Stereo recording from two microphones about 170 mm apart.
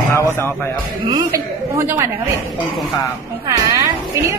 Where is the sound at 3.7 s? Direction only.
20° right (ahead or behind).